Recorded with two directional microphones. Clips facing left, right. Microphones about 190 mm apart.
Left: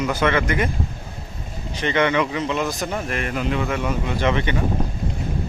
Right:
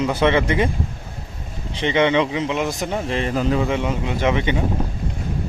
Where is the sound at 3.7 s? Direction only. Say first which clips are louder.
Right 2 dB; 20° right (ahead or behind).